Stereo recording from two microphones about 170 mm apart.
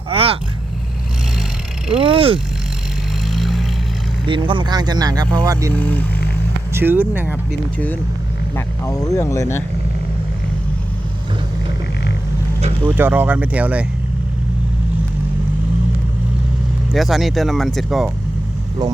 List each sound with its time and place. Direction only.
0.1 s vehicle: 35° right (ahead or behind)
2.0 s speech: 30° right (ahead or behind)
3.2 s vehicle: centre (ahead or behind)
4.3 s speech: 30° right (ahead or behind)
5.7 s speech: 10° left (ahead or behind)
6.7 s speech: 10° right (ahead or behind)
8.5 s speech: 20° left (ahead or behind)
12.9 s speech: 10° right (ahead or behind)
16.9 s speech: centre (ahead or behind)